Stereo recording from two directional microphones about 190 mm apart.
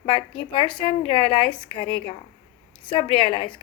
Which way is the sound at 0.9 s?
25° left (ahead or behind).